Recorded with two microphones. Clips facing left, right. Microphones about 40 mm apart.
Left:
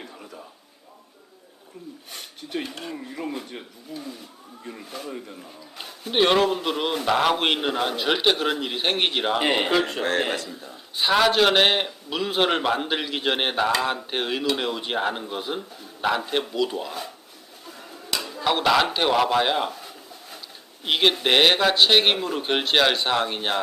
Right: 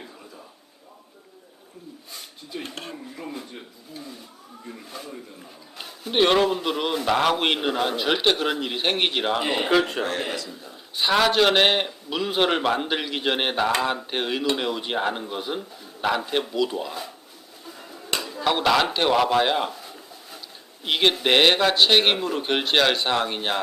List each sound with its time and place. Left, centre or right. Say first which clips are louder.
2.1 s a sound: left 4 dB; left
2.6 s speech: left 1 dB; right
3.9 s a man's voice: left 4 dB; left
4.6 s speech: left 2 dB; centre
5.7 s a man's voice: even; centre
9.4 s speech: left 3 dB; left
9.6 s a man's voice: right 2 dB; centre
10.0 s a man's voice: left 3 dB; left
10.7 s a man's voice: even; centre
17.7 s tick-tock: even; centre
18.2 s a sound: even; centre
20.8 s a man's voice: even; centre